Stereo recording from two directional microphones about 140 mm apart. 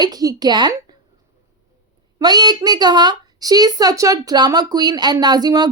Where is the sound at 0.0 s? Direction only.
25° right (ahead or behind).